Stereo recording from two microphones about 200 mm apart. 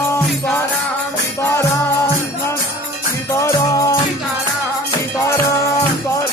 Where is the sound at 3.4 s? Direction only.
15° left (ahead or behind).